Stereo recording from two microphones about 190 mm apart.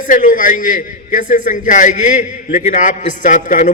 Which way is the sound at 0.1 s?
45° left (ahead or behind).